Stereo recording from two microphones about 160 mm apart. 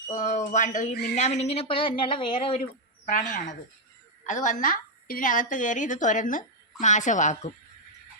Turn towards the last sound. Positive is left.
turn(degrees=50)  # may be behind; listen again after turning